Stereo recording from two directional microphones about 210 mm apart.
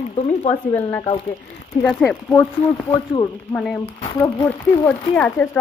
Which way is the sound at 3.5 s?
5° left (ahead or behind).